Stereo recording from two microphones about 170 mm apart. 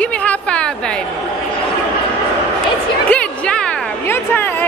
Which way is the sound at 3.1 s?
5° left (ahead or behind).